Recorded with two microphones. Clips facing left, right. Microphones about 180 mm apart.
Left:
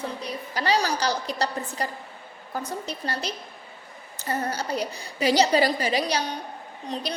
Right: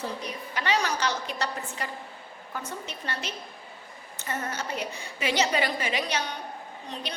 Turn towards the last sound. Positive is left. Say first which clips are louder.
# left 5 dB
turn(degrees=35)  # may be behind; listen again after turning